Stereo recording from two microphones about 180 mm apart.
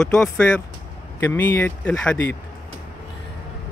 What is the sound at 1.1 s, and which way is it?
Speech, 15° left (ahead or behind).